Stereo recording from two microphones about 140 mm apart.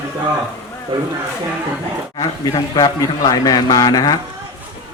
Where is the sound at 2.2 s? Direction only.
25° left (ahead or behind).